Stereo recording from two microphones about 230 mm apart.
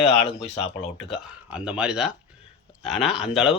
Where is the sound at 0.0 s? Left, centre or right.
Left.